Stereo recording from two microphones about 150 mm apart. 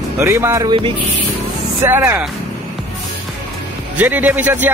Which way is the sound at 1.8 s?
15° right (ahead or behind).